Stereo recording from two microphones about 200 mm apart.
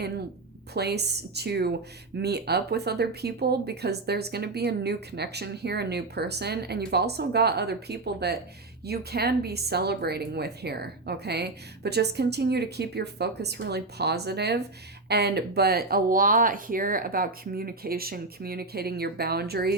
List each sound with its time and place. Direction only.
0.7 s speech: 55° right (ahead or behind)